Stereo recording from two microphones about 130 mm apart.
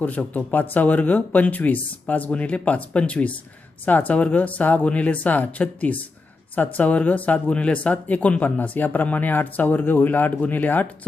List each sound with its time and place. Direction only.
0.0 s speech: 10° left (ahead or behind)